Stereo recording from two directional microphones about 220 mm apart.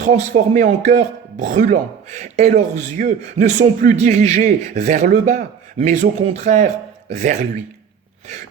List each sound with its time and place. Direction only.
0.0 s speech: 35° right (ahead or behind)